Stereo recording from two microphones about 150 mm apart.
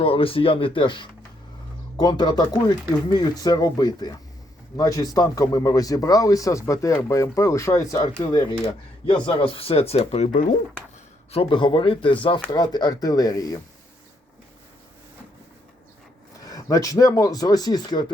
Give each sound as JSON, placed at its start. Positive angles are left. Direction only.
{"t": 0.0, "sound": "speech", "side_deg": 40}
{"t": 11.3, "sound": "speech", "side_deg": 40}
{"t": 16.4, "sound": "speech", "side_deg": 25}